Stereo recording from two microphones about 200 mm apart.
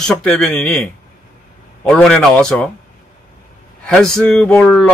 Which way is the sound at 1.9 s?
5° left (ahead or behind).